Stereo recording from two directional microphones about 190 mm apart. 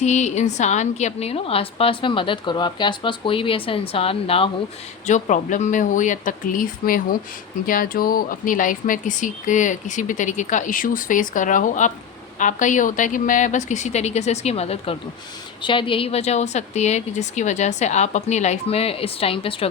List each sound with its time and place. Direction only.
0.0 s a woman's voice: 35° left (ahead or behind)
5.0 s speech: 40° left (ahead or behind)